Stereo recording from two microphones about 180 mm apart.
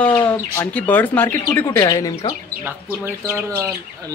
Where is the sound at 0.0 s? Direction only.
10° left (ahead or behind).